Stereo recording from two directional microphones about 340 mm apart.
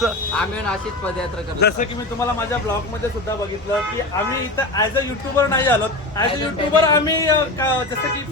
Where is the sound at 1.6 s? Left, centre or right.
Left.